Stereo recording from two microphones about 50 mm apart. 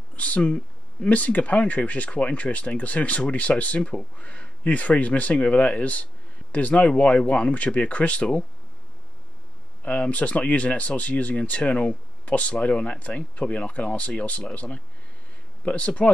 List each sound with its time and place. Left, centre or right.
0.1 s a sound: left
1.0 s speech: left
9.8 s speech: left